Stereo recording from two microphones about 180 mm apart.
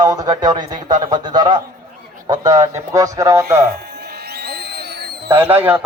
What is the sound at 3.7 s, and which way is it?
Music, 65° right (ahead or behind).